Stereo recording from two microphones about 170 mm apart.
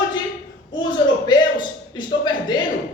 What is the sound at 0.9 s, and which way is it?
A man's voice, 25° left (ahead or behind).